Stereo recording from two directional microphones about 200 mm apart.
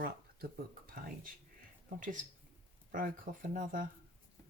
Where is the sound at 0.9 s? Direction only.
45° right (ahead or behind).